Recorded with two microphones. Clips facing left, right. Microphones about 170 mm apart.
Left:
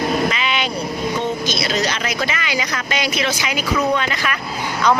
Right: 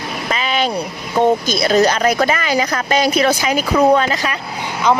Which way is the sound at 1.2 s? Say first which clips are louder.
Right 12 dB; 55° right (ahead or behind).